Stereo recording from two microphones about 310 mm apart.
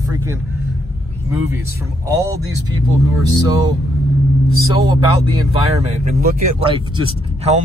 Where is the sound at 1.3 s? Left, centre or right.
Centre.